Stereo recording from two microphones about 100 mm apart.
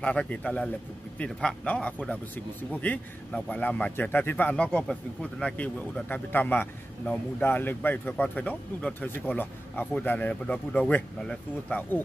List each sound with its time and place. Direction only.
0.0 s speech: 10° left (ahead or behind)